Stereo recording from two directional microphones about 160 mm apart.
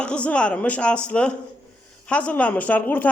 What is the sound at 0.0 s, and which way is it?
A man's voice, 10° left (ahead or behind).